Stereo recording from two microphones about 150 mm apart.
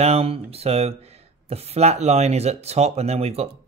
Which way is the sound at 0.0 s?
40° right (ahead or behind).